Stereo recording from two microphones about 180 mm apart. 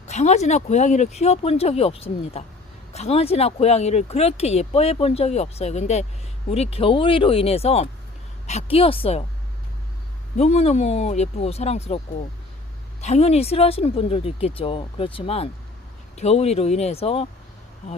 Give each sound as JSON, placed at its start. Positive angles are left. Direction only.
{"t": 0.1, "sound": "speech", "side_deg": 40}
{"t": 10.3, "sound": "speech", "side_deg": 35}
{"t": 13.0, "sound": "speech", "side_deg": 35}